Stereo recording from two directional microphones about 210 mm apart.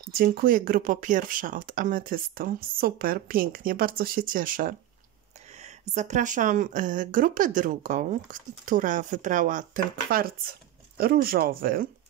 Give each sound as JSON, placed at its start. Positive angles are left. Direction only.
{"t": 0.1, "sound": "speech", "side_deg": -45}